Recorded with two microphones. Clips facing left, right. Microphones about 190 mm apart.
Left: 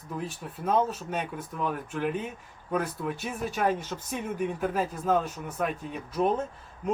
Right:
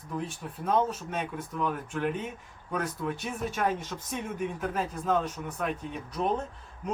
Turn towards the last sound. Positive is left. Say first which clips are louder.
# left 5 dB
turn(degrees=0)  # may be behind; listen again after turning